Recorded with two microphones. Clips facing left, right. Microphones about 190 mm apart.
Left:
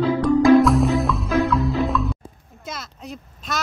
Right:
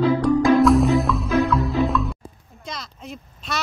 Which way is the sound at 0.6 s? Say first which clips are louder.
Right 2 dB; centre (ahead or behind).